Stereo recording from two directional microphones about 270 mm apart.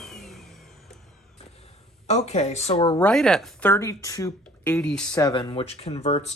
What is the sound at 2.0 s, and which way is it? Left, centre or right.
Speech, left.